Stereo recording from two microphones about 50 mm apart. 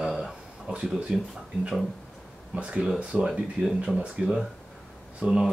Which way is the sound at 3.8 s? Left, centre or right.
Centre.